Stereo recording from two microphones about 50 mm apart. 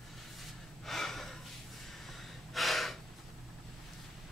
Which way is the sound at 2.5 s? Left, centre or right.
Centre.